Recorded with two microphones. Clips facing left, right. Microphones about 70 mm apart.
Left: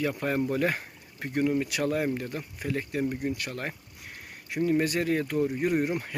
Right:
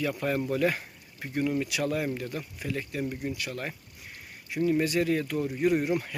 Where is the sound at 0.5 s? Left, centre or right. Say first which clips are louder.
Right 1 dB; left.